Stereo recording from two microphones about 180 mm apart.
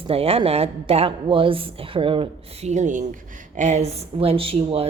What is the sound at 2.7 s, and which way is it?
A woman's voice, 40° right (ahead or behind).